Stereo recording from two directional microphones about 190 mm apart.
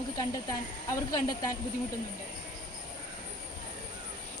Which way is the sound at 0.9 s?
20° left (ahead or behind).